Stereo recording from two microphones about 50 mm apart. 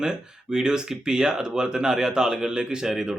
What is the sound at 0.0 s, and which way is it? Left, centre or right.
Speech, centre.